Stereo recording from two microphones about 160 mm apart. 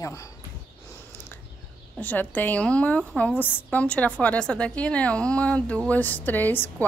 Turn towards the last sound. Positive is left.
turn(degrees=10)  # may be behind; listen again after turning